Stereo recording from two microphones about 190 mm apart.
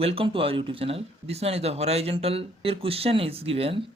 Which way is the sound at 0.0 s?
30° right (ahead or behind).